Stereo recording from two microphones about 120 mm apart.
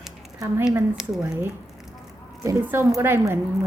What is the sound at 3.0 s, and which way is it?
Speech, 20° right (ahead or behind).